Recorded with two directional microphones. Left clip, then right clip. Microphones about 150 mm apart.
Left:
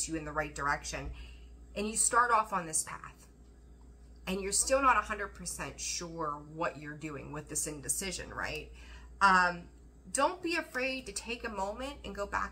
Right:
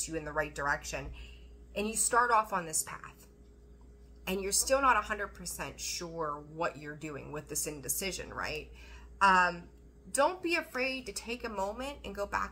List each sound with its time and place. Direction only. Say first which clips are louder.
0.0 s a woman's voice: right 1 dB; 15° right (ahead or behind)
4.2 s a woman's voice: right 1 dB; 15° right (ahead or behind)